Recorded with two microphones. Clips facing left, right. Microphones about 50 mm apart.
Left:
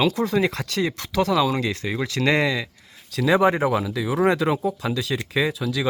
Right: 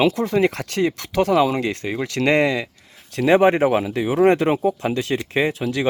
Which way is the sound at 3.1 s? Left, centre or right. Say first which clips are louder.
Right 3 dB; right.